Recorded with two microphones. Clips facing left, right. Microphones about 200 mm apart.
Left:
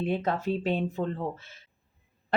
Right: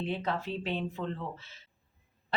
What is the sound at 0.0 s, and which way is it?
Speech, 45° left (ahead or behind).